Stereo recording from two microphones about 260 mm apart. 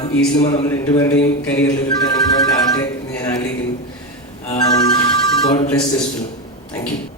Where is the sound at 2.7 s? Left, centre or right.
Centre.